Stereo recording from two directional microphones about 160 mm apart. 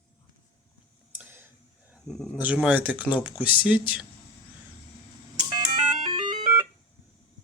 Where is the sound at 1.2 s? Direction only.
10° right (ahead or behind).